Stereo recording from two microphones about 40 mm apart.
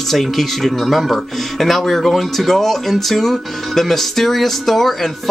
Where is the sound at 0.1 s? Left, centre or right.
Centre.